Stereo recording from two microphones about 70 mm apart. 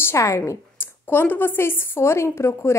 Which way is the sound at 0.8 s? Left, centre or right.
Left.